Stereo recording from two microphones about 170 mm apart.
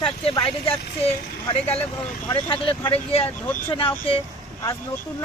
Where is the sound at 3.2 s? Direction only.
10° left (ahead or behind).